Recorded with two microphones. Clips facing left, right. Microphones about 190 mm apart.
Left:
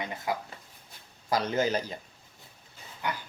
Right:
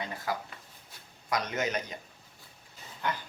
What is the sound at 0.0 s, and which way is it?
Speech, 20° left (ahead or behind).